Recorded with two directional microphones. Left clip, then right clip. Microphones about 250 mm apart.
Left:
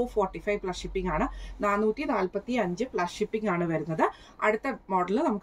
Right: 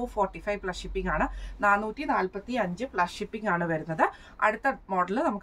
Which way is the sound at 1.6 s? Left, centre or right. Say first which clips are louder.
Right 2 dB; centre.